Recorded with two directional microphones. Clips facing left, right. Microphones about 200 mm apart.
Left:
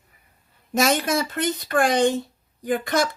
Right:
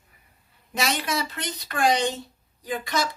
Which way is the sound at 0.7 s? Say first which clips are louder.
Left 6 dB; 50° left (ahead or behind).